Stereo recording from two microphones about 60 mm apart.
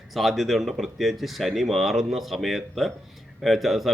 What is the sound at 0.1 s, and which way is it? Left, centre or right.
Speech, centre.